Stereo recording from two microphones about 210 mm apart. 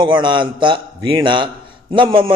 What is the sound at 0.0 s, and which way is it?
A man's voice, 20° right (ahead or behind).